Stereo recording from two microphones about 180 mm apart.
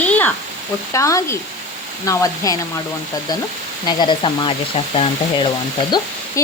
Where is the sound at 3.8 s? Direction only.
25° left (ahead or behind).